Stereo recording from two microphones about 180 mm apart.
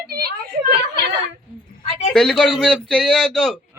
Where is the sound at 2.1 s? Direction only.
5° left (ahead or behind).